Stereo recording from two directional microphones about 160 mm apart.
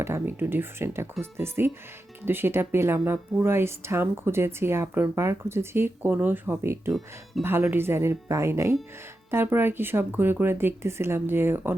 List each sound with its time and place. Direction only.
0.0 s speech: 15° right (ahead or behind)